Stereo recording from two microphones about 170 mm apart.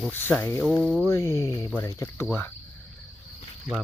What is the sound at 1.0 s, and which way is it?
Speech, 15° left (ahead or behind).